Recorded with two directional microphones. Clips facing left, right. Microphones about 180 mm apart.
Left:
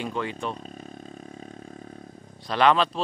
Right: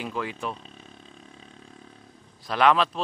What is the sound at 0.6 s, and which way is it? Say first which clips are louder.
Roar: left 8 dB; 45° left (ahead or behind).